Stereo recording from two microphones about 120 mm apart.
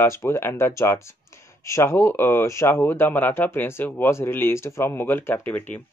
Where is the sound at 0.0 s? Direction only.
25° left (ahead or behind).